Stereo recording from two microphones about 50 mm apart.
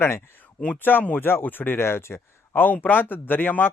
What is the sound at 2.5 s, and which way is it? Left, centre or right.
Speech, left.